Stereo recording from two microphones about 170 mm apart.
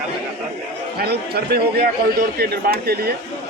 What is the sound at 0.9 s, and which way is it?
A man's voice, 70° right (ahead or behind).